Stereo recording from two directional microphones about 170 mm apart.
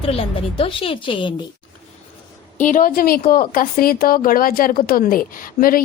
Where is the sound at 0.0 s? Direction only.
35° left (ahead or behind).